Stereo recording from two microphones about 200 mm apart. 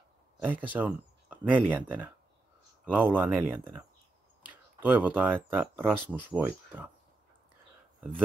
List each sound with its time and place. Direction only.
0.4 s speech: 10° right (ahead or behind)